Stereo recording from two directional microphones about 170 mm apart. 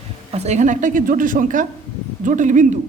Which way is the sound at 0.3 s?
40° right (ahead or behind).